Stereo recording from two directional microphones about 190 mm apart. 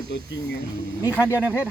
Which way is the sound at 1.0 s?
15° left (ahead or behind).